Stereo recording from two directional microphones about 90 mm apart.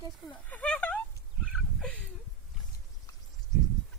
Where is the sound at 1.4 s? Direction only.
10° left (ahead or behind).